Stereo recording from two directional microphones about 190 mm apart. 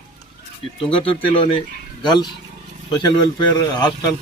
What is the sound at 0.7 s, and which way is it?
Speech, 30° left (ahead or behind).